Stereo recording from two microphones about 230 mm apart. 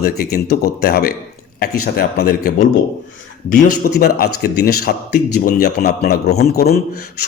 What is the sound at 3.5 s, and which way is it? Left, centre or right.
Speech, left.